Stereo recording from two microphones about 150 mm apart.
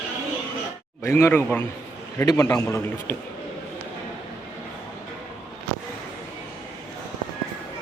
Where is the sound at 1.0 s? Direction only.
15° left (ahead or behind).